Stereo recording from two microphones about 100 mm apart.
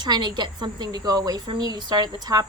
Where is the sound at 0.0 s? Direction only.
45° right (ahead or behind).